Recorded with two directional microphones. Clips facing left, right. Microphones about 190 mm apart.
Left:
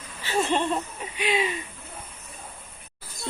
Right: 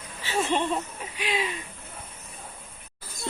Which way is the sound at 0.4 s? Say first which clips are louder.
Left 1 dB; 5° right (ahead or behind).